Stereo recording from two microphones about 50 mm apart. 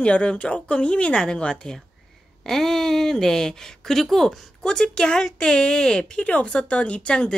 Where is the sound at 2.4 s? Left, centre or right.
Centre.